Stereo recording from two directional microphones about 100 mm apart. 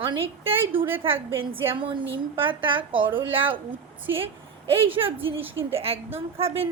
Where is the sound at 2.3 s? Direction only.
55° right (ahead or behind).